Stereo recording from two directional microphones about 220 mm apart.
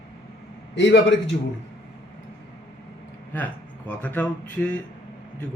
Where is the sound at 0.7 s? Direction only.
55° left (ahead or behind).